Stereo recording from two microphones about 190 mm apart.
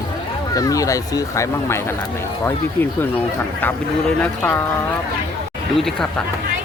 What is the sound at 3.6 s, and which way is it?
Speech, 10° left (ahead or behind).